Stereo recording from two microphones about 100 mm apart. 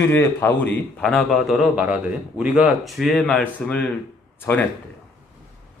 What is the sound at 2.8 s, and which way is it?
Speech, centre (ahead or behind).